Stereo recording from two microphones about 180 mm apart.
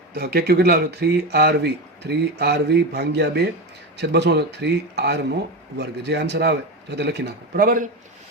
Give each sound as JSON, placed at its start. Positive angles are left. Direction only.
{"t": 0.1, "sound": "speech", "side_deg": -60}